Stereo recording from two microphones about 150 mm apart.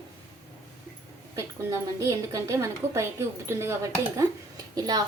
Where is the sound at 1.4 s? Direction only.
20° right (ahead or behind).